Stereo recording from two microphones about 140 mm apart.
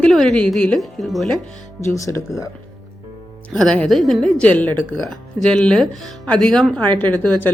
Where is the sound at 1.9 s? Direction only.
25° left (ahead or behind).